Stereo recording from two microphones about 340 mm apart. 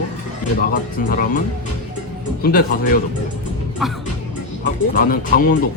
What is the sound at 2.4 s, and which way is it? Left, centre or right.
Speech, left.